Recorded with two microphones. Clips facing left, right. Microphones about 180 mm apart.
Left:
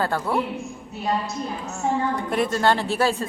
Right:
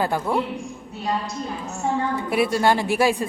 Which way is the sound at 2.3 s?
10° right (ahead or behind).